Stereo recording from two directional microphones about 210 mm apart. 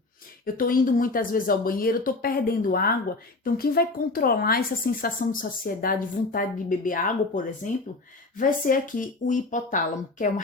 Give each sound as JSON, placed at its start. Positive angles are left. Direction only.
{"t": 0.4, "sound": "a woman's voice", "side_deg": 40}